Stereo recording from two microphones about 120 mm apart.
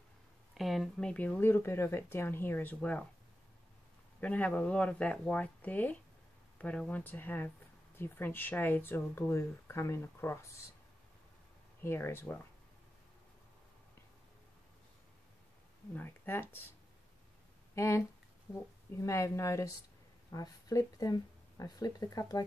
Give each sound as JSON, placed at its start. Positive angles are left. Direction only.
{"t": 0.6, "sound": "speech", "side_deg": 0}
{"t": 4.2, "sound": "speech", "side_deg": 10}
{"t": 11.8, "sound": "speech", "side_deg": 20}
{"t": 15.9, "sound": "speech", "side_deg": 15}
{"t": 17.7, "sound": "speech", "side_deg": 25}